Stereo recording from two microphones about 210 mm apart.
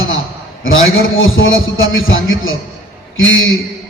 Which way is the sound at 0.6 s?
70° left (ahead or behind).